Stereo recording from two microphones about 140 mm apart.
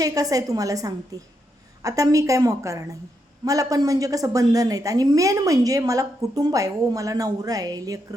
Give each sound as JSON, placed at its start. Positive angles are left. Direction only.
{"t": 0.0, "sound": "a woman's voice", "side_deg": -25}